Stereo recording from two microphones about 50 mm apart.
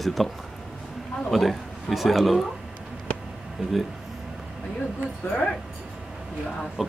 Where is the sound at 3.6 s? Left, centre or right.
Centre.